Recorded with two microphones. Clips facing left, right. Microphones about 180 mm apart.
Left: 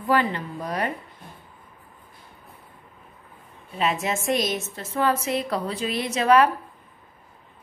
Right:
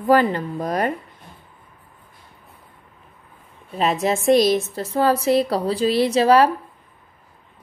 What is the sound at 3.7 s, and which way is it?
A woman's voice, 35° right (ahead or behind).